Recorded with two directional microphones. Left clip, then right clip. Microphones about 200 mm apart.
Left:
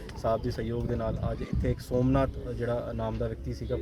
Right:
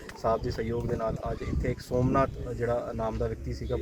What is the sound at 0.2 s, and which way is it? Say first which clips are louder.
Speech: right 1 dB; 10° left (ahead or behind).